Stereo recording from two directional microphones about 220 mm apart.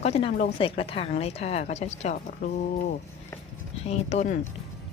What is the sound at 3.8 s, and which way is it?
Speech, 30° left (ahead or behind).